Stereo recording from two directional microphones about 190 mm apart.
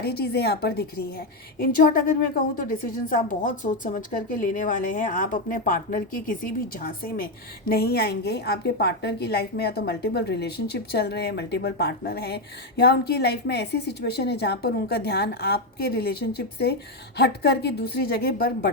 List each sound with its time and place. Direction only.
0.0 s a woman's voice: 60° left (ahead or behind)